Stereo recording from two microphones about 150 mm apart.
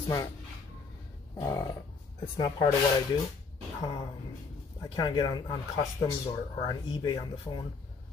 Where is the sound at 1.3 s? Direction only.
20° left (ahead or behind).